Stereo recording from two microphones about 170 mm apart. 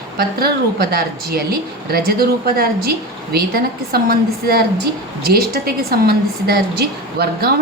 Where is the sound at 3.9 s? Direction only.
65° right (ahead or behind).